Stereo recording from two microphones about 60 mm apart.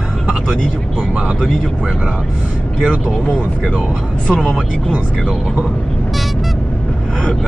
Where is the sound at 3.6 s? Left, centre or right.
Centre.